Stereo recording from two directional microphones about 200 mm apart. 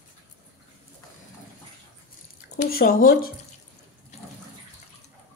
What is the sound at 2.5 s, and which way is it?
Speech, 45° left (ahead or behind).